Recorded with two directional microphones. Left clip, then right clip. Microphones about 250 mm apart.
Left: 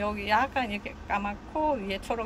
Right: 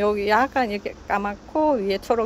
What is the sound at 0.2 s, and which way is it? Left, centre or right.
Speech, right.